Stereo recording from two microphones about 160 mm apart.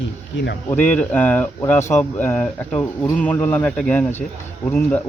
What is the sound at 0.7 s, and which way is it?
Speech, 10° left (ahead or behind).